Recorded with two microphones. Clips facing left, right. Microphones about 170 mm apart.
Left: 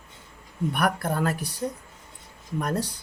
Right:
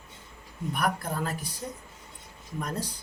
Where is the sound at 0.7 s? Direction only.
70° left (ahead or behind).